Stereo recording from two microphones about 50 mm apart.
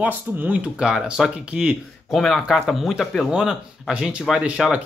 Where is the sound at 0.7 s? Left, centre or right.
Centre.